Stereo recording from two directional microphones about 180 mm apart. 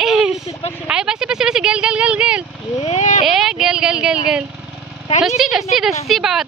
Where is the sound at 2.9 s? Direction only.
40° left (ahead or behind).